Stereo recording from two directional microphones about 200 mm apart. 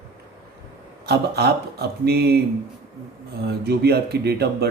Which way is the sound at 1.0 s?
55° right (ahead or behind).